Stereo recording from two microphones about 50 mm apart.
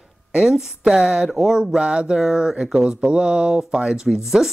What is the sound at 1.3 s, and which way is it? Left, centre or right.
Speech, centre.